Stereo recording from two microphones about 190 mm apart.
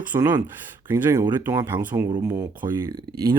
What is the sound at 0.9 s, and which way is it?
Speech, 20° right (ahead or behind).